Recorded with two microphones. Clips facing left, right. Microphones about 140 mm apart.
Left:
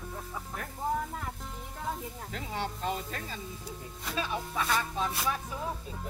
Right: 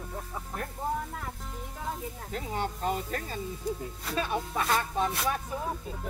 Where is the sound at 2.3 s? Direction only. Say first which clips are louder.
Right 3 dB; 45° right (ahead or behind).